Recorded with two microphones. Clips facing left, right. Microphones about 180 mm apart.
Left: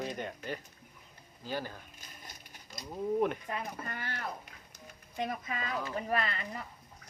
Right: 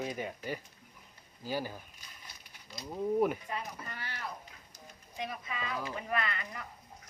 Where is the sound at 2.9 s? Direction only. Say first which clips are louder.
Right 1 dB; 5° right (ahead or behind).